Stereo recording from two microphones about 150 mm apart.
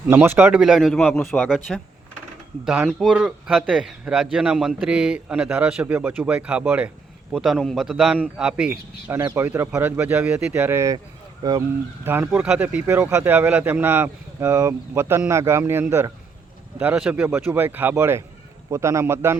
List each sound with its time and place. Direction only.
0.1 s a man's voice: 15° right (ahead or behind)
7.3 s a man's voice: centre (ahead or behind)
9.1 s speech: 20° right (ahead or behind)
12.0 s speech: 15° right (ahead or behind)